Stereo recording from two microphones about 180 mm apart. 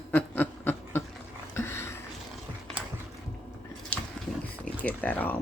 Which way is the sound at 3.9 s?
5° left (ahead or behind).